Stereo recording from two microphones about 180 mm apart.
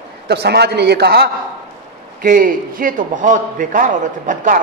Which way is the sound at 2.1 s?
50° right (ahead or behind).